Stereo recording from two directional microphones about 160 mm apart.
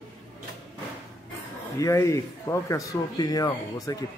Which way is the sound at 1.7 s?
20° left (ahead or behind).